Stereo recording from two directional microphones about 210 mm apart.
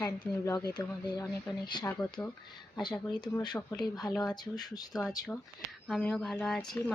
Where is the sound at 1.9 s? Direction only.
5° left (ahead or behind).